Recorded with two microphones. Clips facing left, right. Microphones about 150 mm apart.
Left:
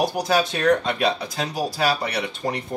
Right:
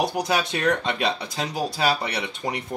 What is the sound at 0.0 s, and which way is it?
Speech, 20° right (ahead or behind).